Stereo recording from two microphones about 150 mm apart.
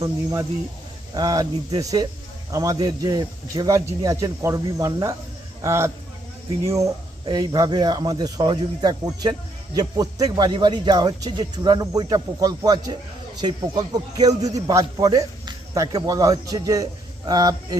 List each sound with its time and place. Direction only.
0.0 s a man's voice: 20° right (ahead or behind)
7.3 s a man's voice: 25° right (ahead or behind)